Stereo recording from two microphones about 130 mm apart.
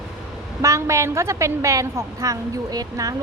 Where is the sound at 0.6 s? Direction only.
25° right (ahead or behind).